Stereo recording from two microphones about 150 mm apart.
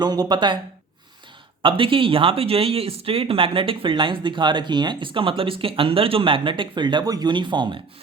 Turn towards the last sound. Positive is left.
turn(degrees=-30)  # may be behind; listen again after turning